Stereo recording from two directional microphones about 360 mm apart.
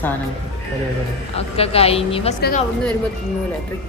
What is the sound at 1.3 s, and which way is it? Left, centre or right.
A woman's voice, centre.